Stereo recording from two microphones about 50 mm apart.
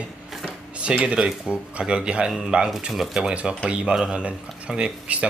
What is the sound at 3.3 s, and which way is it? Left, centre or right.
Speech, right.